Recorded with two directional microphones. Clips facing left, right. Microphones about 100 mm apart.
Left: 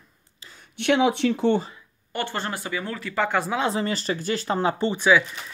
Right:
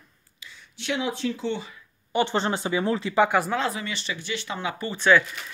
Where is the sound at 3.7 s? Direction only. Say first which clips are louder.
Left 7 dB; 35° left (ahead or behind).